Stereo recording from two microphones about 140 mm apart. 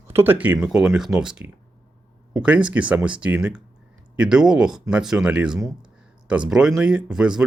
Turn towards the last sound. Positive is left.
turn(degrees=-5)  # may be behind; listen again after turning